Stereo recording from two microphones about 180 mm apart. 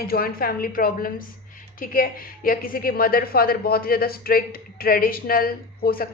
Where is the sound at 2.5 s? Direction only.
55° left (ahead or behind).